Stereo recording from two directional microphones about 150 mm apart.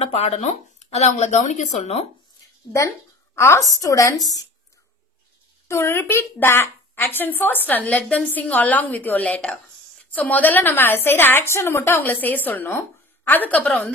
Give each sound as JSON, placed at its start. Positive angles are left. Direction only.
{"t": 0.0, "sound": "speech", "side_deg": 45}
{"t": 3.3, "sound": "a woman's voice", "side_deg": 20}
{"t": 5.7, "sound": "a woman's voice", "side_deg": 15}